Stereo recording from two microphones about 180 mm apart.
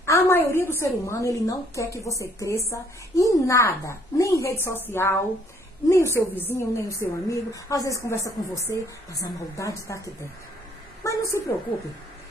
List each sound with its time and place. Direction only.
0.0 s a woman's voice: 15° left (ahead or behind)